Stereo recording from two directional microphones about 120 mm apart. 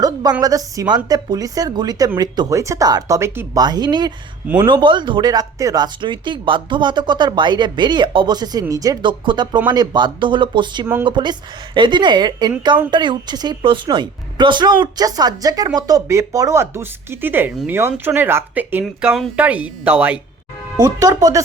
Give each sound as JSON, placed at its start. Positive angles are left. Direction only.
{"t": 0.0, "sound": "a sound", "side_deg": -30}
{"t": 0.4, "sound": "a woman's voice", "side_deg": -30}
{"t": 3.6, "sound": "a woman's voice", "side_deg": -35}
{"t": 20.7, "sound": "a woman's voice", "side_deg": -30}